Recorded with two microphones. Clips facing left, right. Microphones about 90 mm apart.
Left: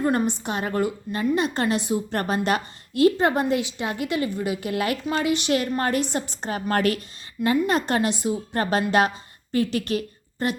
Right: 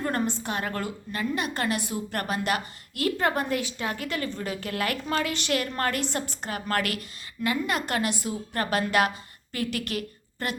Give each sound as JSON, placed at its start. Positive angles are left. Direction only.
{"t": 0.0, "sound": "a woman's voice", "side_deg": 20}